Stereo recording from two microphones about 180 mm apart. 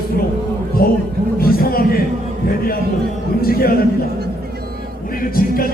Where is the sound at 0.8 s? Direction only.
55° left (ahead or behind).